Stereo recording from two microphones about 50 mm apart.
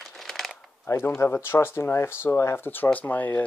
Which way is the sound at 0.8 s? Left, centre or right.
Left.